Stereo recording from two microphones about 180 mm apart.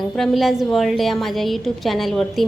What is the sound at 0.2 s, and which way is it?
A woman's voice, centre (ahead or behind).